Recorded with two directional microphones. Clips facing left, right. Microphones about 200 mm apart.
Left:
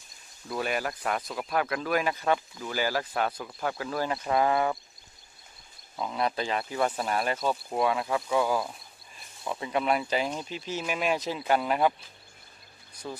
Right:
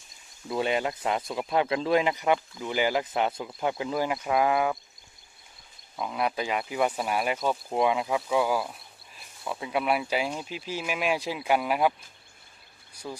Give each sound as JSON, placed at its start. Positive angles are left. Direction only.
{"t": 0.4, "sound": "speech", "side_deg": -25}
{"t": 6.0, "sound": "speech", "side_deg": -10}
{"t": 12.9, "sound": "a sound", "side_deg": -10}